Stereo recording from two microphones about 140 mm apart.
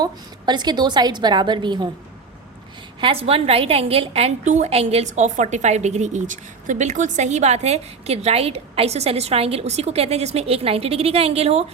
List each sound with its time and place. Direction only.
0.0 s a woman's voice: 30° right (ahead or behind)
3.0 s a woman's voice: 40° right (ahead or behind)